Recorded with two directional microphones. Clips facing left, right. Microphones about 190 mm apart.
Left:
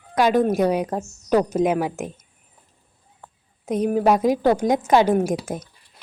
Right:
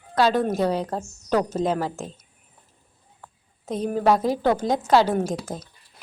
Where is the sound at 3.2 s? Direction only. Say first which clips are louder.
Left 3 dB; 15° left (ahead or behind).